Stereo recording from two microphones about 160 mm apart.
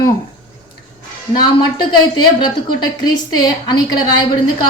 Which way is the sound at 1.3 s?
25° left (ahead or behind).